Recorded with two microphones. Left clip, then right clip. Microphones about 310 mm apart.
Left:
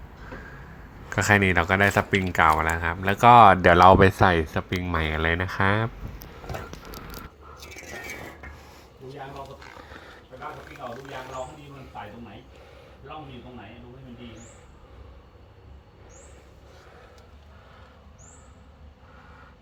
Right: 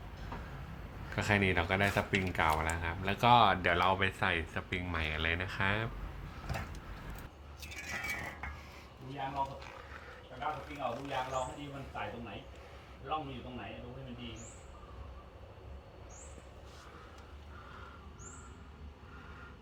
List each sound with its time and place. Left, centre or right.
1.1 s speech: centre
9.9 s roaring cats: left